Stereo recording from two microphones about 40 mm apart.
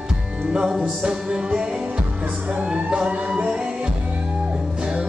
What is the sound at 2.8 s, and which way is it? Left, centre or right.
Music, right.